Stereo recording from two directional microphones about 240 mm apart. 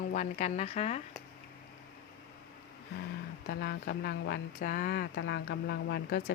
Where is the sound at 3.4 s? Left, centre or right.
Left.